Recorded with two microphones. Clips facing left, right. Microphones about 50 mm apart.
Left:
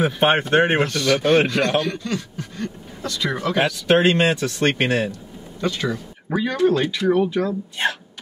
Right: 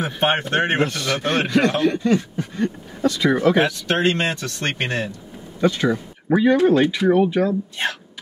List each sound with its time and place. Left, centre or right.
0.0 s speech: centre
0.8 s a man's voice: centre
1.8 s a man's voice: right
3.8 s speech: centre
5.6 s speech: centre